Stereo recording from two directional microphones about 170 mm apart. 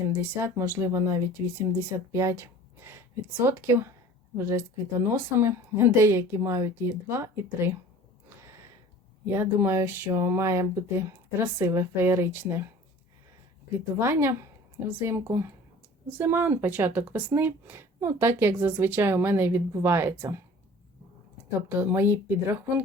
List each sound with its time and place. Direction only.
0.2 s speech: 15° right (ahead or behind)
9.2 s speech: 10° right (ahead or behind)
13.7 s speech: 15° right (ahead or behind)
21.8 s speech: 10° right (ahead or behind)